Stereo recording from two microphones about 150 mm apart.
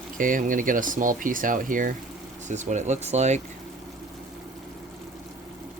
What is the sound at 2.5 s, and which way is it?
Speech, 50° right (ahead or behind).